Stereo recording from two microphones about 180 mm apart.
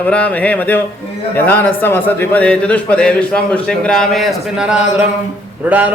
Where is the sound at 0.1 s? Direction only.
10° left (ahead or behind).